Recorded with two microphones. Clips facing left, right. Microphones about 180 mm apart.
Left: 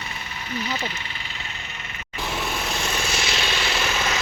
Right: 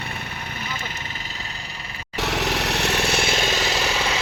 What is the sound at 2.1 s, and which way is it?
Vehicle, 80° right.